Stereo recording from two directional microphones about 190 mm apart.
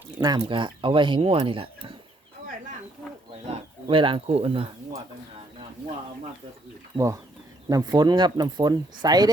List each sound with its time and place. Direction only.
0.2 s speech: 25° right (ahead or behind)
3.4 s speech: 30° right (ahead or behind)
6.9 s speech: 15° right (ahead or behind)